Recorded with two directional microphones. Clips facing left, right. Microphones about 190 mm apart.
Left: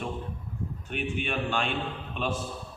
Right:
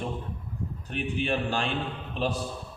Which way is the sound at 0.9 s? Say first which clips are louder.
Right 3 dB; 35° right (ahead or behind).